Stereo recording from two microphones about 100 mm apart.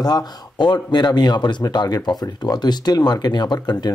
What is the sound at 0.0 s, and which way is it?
Speech, 45° left (ahead or behind).